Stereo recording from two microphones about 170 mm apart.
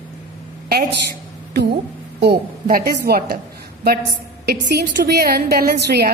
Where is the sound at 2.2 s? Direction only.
65° right (ahead or behind).